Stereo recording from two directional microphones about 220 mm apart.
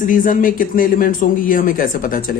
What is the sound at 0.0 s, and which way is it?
Speech, 35° left (ahead or behind).